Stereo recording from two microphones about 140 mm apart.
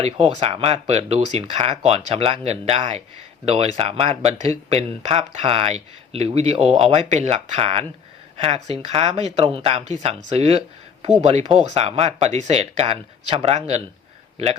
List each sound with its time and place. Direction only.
0.0 s a man's voice: 50° right (ahead or behind)